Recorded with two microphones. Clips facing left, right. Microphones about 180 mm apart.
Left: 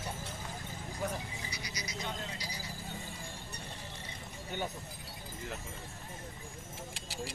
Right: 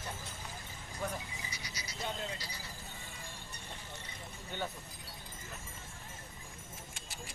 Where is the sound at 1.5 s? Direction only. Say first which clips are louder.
Left 4 dB; 10° left (ahead or behind).